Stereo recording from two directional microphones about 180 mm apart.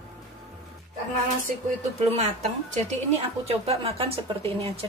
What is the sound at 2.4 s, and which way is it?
Speech, 40° right (ahead or behind).